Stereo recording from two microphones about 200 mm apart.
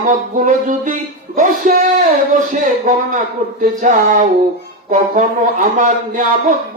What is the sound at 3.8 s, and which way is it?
Speech, 40° right (ahead or behind).